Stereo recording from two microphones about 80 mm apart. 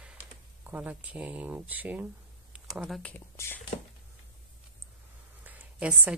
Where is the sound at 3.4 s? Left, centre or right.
Left.